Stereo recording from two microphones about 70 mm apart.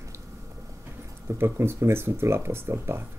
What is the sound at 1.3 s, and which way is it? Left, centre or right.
Speech, right.